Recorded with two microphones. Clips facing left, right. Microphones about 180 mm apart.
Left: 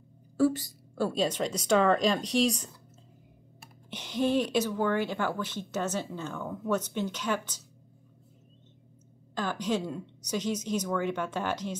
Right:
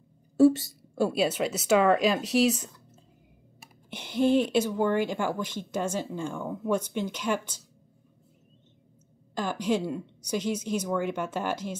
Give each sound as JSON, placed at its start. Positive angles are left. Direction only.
{"t": 0.4, "sound": "a woman's voice", "side_deg": -25}
{"t": 0.9, "sound": "a woman's voice", "side_deg": -10}
{"t": 3.9, "sound": "a woman's voice", "side_deg": -10}
{"t": 9.3, "sound": "a woman's voice", "side_deg": -10}